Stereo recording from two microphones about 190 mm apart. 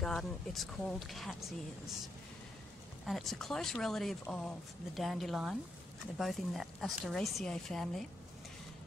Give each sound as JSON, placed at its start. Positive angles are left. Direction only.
{"t": 0.0, "sound": "speech", "side_deg": 0}
{"t": 3.1, "sound": "speech", "side_deg": 0}